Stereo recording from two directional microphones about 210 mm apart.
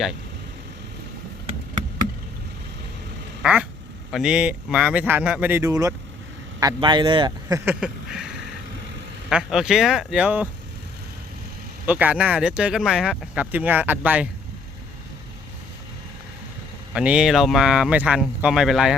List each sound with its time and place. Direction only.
3.4 s quack: 5° right (ahead or behind)
4.1 s speech: 5° right (ahead or behind)
11.9 s speech: 5° right (ahead or behind)
16.9 s speech: 5° right (ahead or behind)